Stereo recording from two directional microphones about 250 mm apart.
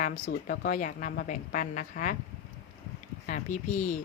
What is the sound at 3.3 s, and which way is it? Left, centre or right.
Speech, left.